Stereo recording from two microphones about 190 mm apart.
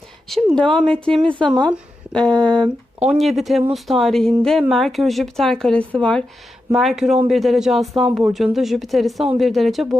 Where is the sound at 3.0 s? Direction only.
Centre (ahead or behind).